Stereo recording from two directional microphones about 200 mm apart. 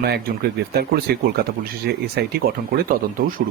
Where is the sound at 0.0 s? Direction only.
55° right (ahead or behind).